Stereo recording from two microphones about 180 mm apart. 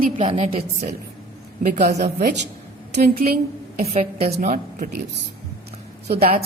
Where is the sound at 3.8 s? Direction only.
35° right (ahead or behind); by 5.0 s 50° right (ahead or behind).